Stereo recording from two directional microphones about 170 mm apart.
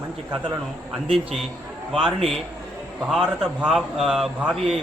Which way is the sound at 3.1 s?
5° right (ahead or behind).